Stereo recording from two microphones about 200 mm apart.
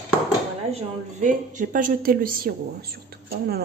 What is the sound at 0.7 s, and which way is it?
A woman's voice, 35° right (ahead or behind).